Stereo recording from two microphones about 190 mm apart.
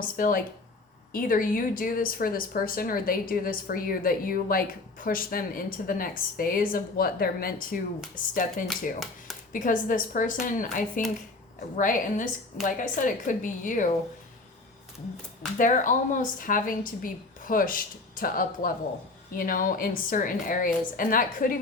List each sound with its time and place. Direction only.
0.2 s speech: 45° left (ahead or behind)
15.5 s speech: 45° left (ahead or behind)